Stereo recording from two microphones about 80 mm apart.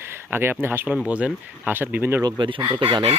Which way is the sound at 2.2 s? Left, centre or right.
Right.